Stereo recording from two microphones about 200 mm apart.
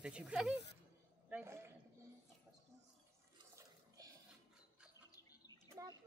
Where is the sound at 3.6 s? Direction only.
20° right (ahead or behind).